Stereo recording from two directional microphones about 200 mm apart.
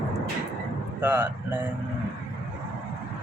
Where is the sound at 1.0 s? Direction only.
10° right (ahead or behind).